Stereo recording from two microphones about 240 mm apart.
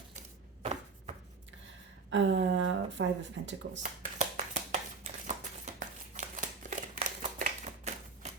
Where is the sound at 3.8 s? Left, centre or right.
Right.